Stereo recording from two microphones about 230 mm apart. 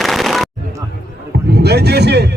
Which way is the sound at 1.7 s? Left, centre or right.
Right.